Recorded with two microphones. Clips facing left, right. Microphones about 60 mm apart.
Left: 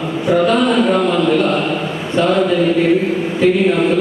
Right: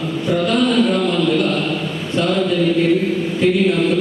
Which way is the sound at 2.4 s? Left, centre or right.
Left.